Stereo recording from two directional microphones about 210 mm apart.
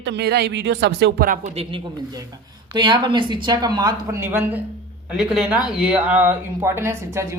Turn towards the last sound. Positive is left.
turn(degrees=-15)  # may be behind; listen again after turning